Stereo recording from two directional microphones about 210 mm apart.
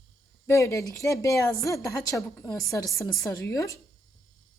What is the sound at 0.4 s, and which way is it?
A woman's voice, 15° left (ahead or behind).